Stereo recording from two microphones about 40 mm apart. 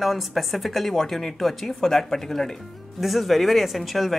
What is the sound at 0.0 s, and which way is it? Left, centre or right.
Speech, centre.